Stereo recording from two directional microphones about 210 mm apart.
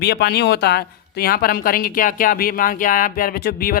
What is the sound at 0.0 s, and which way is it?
Speech, 50° left (ahead or behind).